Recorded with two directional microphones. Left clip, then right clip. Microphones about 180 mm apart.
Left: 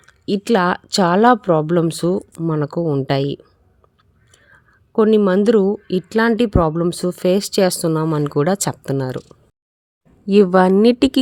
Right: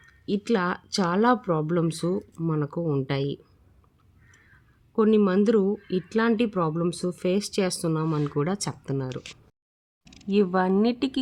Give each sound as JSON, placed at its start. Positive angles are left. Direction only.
{"t": 0.0, "sound": "speech", "side_deg": 45}
{"t": 4.9, "sound": "speech", "side_deg": 40}
{"t": 9.3, "sound": "a sound", "side_deg": 35}
{"t": 10.2, "sound": "speech", "side_deg": 35}